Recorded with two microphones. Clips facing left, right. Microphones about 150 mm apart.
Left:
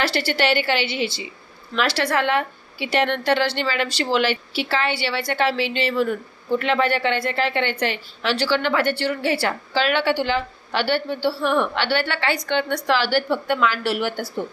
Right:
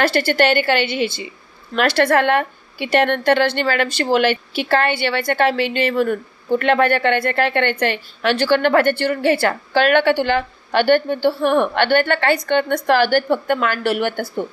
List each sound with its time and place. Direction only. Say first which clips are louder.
0.0 s a woman's voice: right 5 dB; 50° right (ahead or behind)